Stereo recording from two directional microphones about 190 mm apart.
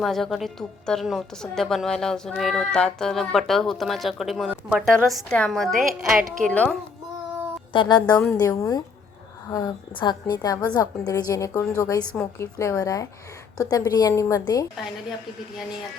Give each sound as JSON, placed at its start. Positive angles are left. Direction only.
{"t": 0.0, "sound": "a woman's voice", "side_deg": 0}
{"t": 7.7, "sound": "a woman's voice", "side_deg": 25}